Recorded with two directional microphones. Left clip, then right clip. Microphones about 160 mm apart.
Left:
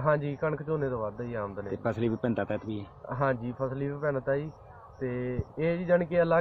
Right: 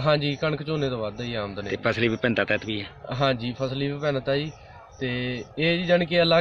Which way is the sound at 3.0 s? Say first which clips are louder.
Right 4 dB; 5° right (ahead or behind).